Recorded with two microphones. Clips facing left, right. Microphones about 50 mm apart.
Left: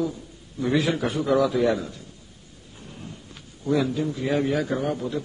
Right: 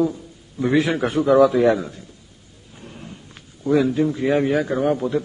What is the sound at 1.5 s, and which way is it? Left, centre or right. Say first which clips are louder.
Speech: right 5 dB; right.